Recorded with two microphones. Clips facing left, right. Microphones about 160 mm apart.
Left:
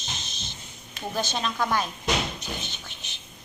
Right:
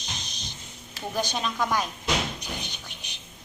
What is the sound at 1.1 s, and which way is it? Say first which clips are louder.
Speech: even; 15° right (ahead or behind).